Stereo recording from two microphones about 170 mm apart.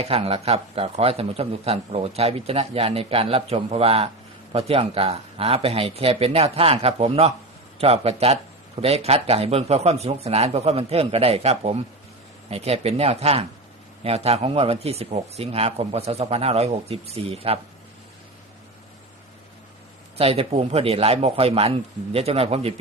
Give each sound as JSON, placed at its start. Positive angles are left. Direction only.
{"t": 0.0, "sound": "a man's voice", "side_deg": -35}
{"t": 20.1, "sound": "a man's voice", "side_deg": -35}